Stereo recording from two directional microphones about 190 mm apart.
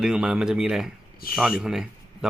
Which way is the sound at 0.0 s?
5° right (ahead or behind).